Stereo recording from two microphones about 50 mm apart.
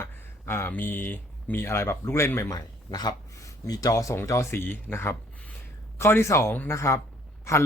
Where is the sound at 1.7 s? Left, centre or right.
Left.